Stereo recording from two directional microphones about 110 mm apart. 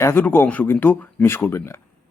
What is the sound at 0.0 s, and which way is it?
Speech, 20° left (ahead or behind).